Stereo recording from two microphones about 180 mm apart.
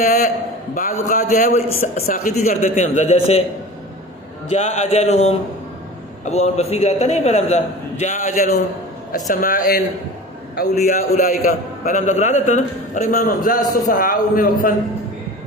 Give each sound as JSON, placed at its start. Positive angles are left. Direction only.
{"t": 0.0, "sound": "a man's voice", "side_deg": 45}
{"t": 4.4, "sound": "a man's voice", "side_deg": 40}